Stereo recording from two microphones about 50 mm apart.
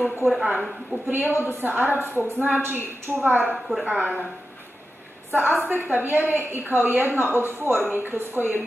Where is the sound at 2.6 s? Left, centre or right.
Right.